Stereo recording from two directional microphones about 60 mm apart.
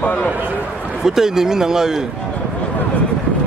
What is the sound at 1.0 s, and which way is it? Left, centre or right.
Speech, centre.